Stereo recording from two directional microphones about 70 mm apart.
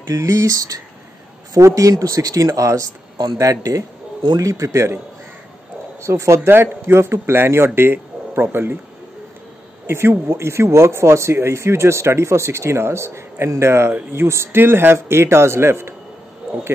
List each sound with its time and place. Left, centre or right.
0.1 s speech: right
5.9 s speech: right
9.8 s speech: right